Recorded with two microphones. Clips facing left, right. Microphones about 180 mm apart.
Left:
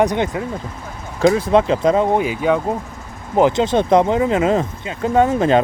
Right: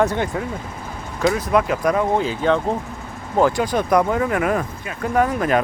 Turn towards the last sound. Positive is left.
turn(degrees=25)  # may be behind; listen again after turning